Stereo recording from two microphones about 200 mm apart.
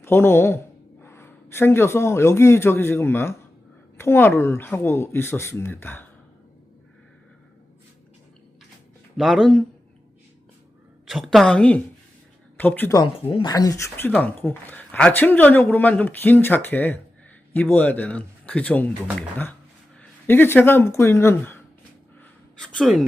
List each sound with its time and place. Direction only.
0.0 s a man's voice: 10° left (ahead or behind)
9.1 s a woman's voice: centre (ahead or behind)
11.0 s a woman's voice: centre (ahead or behind)
13.0 s speech: 25° left (ahead or behind); by 21.6 s 10° left (ahead or behind)
22.2 s a sound: 5° left (ahead or behind)